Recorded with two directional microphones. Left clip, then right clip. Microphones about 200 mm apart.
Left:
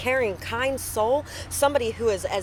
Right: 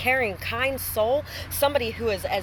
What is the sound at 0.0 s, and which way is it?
Speech, 10° left (ahead or behind).